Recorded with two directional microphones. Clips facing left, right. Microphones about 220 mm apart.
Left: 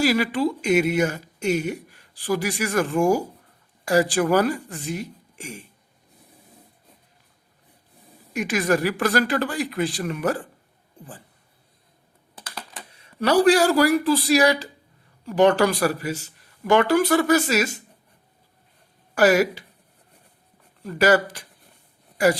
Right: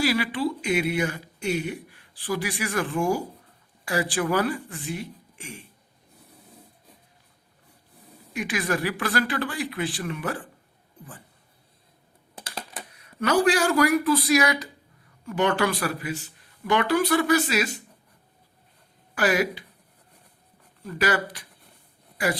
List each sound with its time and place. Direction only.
0.0 s speech: 45° left (ahead or behind)
8.3 s speech: 45° left (ahead or behind)
12.4 s typing: 25° right (ahead or behind)
12.9 s speech: 30° left (ahead or behind)
19.1 s speech: 40° left (ahead or behind)
20.8 s speech: 40° left (ahead or behind)